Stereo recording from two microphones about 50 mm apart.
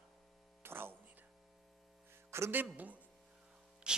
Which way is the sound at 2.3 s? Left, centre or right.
Right.